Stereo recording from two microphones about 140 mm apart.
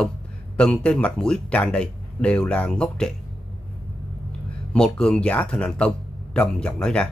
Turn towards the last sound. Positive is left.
turn(degrees=5)  # may be behind; listen again after turning